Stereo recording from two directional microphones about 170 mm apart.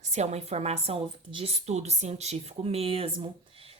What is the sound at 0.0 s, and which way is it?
A woman's voice, 40° right (ahead or behind).